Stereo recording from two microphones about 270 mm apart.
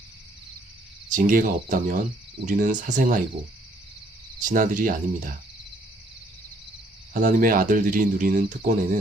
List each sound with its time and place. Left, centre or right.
1.1 s speech: right
4.4 s speech: right
7.1 s speech: right